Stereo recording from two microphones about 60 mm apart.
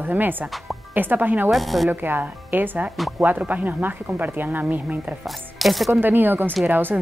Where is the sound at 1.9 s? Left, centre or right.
Right.